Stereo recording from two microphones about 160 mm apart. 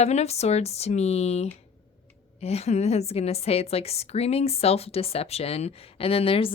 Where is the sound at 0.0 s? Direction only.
40° left (ahead or behind).